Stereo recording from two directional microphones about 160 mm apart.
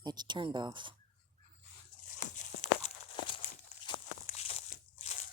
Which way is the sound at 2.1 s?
50° left (ahead or behind).